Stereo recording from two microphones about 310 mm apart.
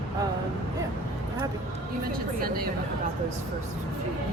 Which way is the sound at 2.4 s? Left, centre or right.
Right.